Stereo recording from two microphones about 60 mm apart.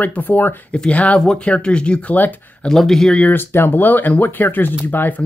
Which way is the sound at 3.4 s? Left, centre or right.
Left.